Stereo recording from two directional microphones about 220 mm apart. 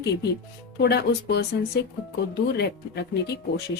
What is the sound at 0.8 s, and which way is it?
Speech, 50° left (ahead or behind).